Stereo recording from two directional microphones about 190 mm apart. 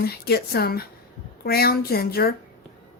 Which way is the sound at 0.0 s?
55° left (ahead or behind).